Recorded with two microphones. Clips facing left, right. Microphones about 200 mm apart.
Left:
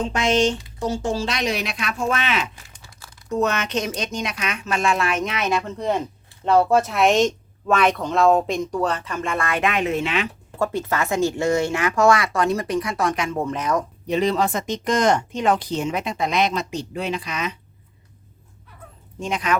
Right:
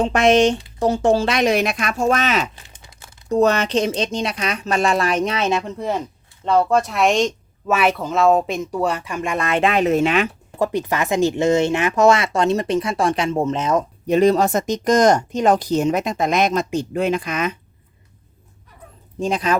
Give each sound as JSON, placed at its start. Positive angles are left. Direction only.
{"t": 0.0, "sound": "speech", "side_deg": -60}
{"t": 2.7, "sound": "crumpling", "side_deg": -20}
{"t": 3.2, "sound": "speech", "side_deg": -35}
{"t": 5.7, "sound": "speech", "side_deg": -5}
{"t": 6.4, "sound": "speech", "side_deg": 5}
{"t": 10.6, "sound": "speech", "side_deg": -15}
{"t": 14.1, "sound": "speech", "side_deg": -45}
{"t": 19.2, "sound": "speech", "side_deg": -35}